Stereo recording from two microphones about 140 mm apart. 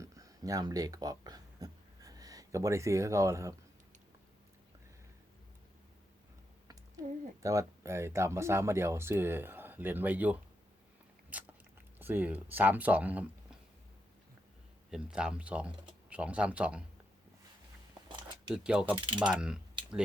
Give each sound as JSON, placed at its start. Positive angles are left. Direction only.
{"t": 0.0, "sound": "a sound", "side_deg": -25}
{"t": 7.4, "sound": "speech", "side_deg": -20}
{"t": 11.3, "sound": "biting", "side_deg": -10}
{"t": 11.9, "sound": "speech", "side_deg": -15}
{"t": 14.8, "sound": "speech", "side_deg": -5}
{"t": 18.5, "sound": "speech", "side_deg": -5}
{"t": 18.9, "sound": "mechanisms", "side_deg": -35}
{"t": 19.2, "sound": "mechanisms", "side_deg": -5}